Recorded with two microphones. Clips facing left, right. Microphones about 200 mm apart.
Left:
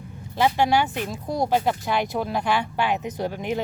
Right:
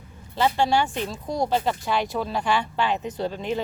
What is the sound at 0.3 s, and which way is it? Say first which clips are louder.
Speech: left 1 dB; 15° left (ahead or behind).